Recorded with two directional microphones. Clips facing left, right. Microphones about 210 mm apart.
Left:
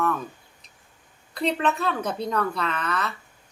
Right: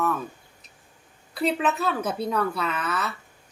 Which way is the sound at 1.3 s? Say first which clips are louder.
Even; 5° right (ahead or behind).